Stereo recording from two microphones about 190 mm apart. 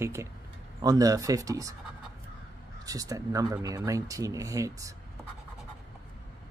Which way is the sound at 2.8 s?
20° right (ahead or behind).